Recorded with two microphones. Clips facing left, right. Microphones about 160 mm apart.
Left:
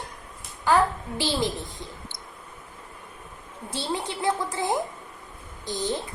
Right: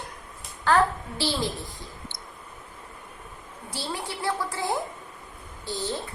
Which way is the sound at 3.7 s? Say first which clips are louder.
Left 4 dB; 20° left (ahead or behind).